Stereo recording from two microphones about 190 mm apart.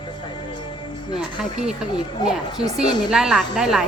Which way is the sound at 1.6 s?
5° right (ahead or behind).